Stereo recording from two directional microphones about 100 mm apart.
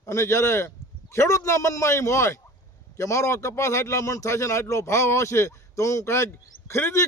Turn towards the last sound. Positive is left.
turn(degrees=25)  # may be behind; listen again after turning